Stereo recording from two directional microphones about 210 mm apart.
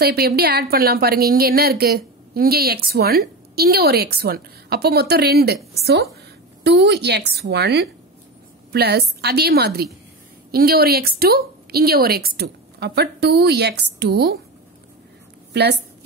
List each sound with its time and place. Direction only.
0.0 s a woman's voice: 50° right (ahead or behind)
15.5 s a woman's voice: 50° right (ahead or behind)